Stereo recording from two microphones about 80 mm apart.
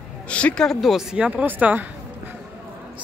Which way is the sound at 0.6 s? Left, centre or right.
Centre.